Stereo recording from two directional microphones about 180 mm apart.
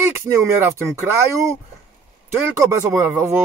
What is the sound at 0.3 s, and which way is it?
Speech, 10° right (ahead or behind).